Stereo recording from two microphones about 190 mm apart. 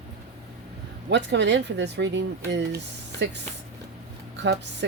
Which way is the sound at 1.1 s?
70° right (ahead or behind).